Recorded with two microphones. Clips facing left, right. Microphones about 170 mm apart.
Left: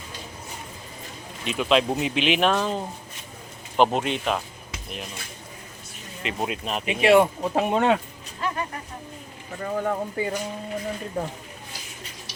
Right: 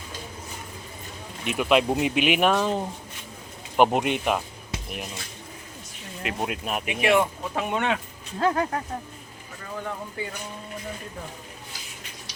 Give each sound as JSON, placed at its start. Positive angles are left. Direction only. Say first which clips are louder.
{"t": 1.5, "sound": "speech", "louder": "even", "side_deg": -10}
{"t": 6.2, "sound": "speech", "louder": "left 1 dB", "side_deg": -5}
{"t": 6.8, "sound": "speech", "louder": "left 5 dB", "side_deg": 25}
{"t": 8.4, "sound": "speech", "louder": "right 6 dB", "side_deg": -90}
{"t": 9.6, "sound": "speech", "louder": "left 8 dB", "side_deg": 45}